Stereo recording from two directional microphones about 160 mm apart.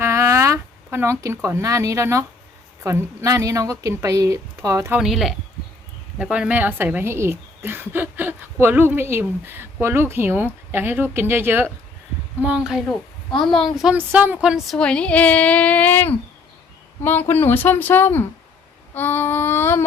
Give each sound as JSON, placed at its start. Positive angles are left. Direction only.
{"t": 0.0, "sound": "a sound", "side_deg": -15}
{"t": 1.2, "sound": "a woman's voice", "side_deg": -20}
{"t": 4.9, "sound": "speech", "side_deg": 0}